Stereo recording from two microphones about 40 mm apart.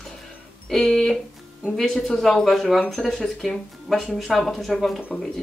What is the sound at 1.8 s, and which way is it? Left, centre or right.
Speech, centre.